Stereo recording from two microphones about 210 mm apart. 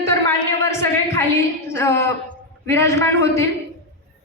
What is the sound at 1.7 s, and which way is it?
A woman's voice, 10° left (ahead or behind).